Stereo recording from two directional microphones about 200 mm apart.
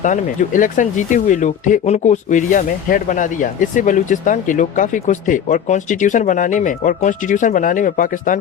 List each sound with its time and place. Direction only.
0.0 s speech: 40° left (ahead or behind)